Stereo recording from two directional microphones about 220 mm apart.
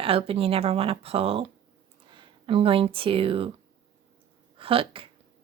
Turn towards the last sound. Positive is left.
turn(degrees=-25)  # may be behind; listen again after turning